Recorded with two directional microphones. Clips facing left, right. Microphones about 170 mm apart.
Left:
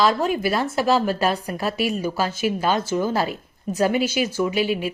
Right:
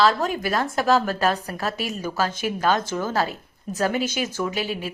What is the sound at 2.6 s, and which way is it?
A woman's voice, 10° left (ahead or behind).